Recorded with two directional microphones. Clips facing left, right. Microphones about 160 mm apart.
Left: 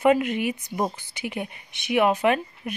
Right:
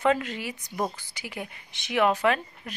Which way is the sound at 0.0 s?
15° left (ahead or behind).